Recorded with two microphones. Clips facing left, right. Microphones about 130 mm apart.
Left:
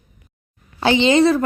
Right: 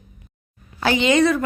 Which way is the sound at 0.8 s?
25° left (ahead or behind).